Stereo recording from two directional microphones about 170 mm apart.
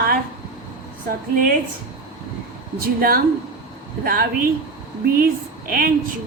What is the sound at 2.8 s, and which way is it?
A woman's voice, 60° right (ahead or behind).